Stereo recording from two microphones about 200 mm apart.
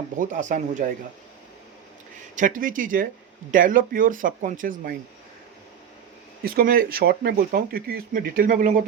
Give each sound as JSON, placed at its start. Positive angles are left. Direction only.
{"t": 0.2, "sound": "speech", "side_deg": -40}
{"t": 2.3, "sound": "speech", "side_deg": -40}
{"t": 6.4, "sound": "speech", "side_deg": -45}